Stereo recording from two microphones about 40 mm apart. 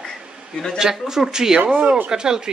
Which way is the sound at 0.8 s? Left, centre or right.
Centre.